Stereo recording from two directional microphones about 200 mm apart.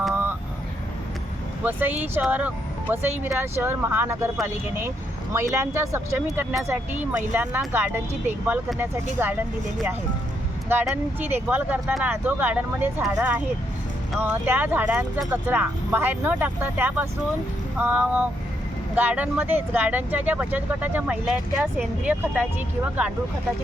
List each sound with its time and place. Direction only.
0.1 s vehicle: 10° right (ahead or behind)
1.6 s speech: 10° right (ahead or behind)
5.3 s speech: 15° right (ahead or behind)
10.7 s speech: 10° right (ahead or behind)